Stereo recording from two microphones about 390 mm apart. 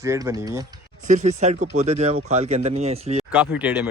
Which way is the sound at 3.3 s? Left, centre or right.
Centre.